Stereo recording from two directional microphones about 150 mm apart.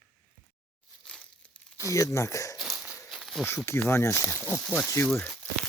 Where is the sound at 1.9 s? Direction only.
20° left (ahead or behind).